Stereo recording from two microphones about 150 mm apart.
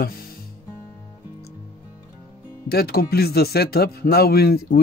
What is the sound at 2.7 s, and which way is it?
Speech, 90° left.